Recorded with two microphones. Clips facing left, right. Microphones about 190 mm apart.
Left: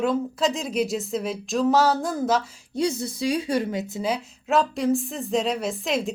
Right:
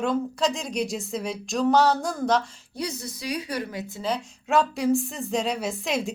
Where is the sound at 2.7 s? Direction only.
25° left (ahead or behind).